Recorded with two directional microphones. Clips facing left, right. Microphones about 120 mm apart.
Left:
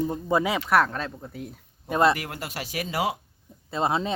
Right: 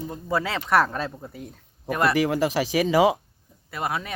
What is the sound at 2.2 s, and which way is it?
Speech, 90° right.